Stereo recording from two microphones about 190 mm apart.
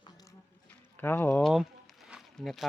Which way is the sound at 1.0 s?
10° left (ahead or behind).